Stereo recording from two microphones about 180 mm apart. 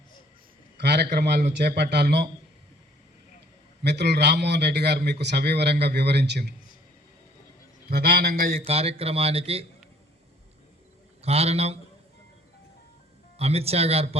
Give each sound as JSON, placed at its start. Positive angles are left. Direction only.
{"t": 0.8, "sound": "a man's voice", "side_deg": -65}
{"t": 3.8, "sound": "a man's voice", "side_deg": -65}
{"t": 7.9, "sound": "a man's voice", "side_deg": -60}
{"t": 8.6, "sound": "speech", "side_deg": -35}
{"t": 11.2, "sound": "speech", "side_deg": -35}
{"t": 13.4, "sound": "speech", "side_deg": -35}